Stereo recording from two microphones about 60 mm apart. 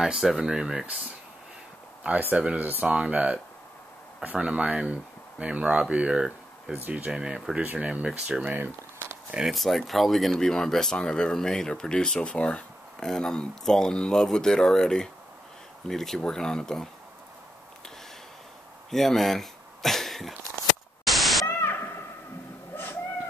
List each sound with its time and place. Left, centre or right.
0.0 s speech: centre
2.0 s speech: right
7.6 s speech: right
8.5 s speech: right
9.5 s speech: centre
18.9 s speech: centre
21.0 s static: centre
21.5 s static: left